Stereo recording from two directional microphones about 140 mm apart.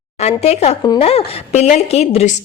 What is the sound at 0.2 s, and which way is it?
A woman's voice, 50° left (ahead or behind).